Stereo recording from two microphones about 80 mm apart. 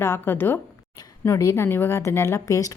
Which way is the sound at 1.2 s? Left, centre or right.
Left.